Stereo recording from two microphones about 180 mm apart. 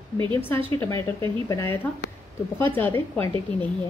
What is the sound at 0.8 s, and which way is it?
Speech, 15° left (ahead or behind).